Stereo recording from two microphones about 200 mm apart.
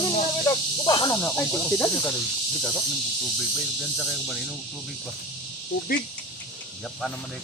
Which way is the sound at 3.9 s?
Centre (ahead or behind).